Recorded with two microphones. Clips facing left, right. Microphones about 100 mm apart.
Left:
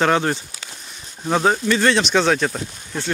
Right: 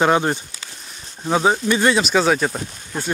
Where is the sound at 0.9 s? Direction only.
Centre (ahead or behind).